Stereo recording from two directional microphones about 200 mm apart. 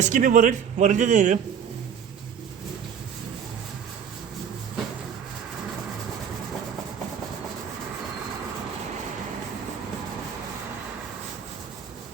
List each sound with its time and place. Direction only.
0.0 s speech: 40° right (ahead or behind)